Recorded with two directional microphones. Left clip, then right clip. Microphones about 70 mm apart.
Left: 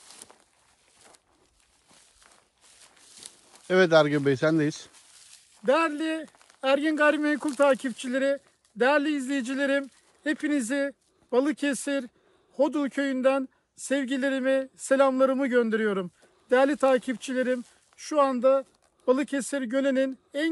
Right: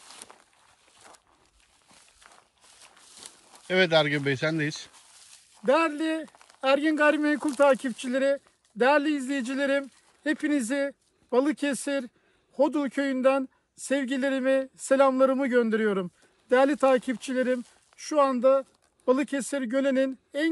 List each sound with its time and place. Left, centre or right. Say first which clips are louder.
0.0 s walk: right 3 dB; centre
0.9 s a sound: right 4 dB; centre
2.2 s walk: right 3 dB; centre
3.4 s a man's voice: left 2 dB; left
4.9 s a sound: even; centre
5.7 s a man's voice: even; left
7.3 s a man's voice: right 1 dB; centre; by 17.6 s left
17.6 s speech: right 1 dB; left